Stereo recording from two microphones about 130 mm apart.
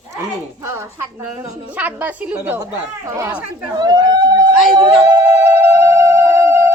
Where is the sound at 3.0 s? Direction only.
25° right (ahead or behind).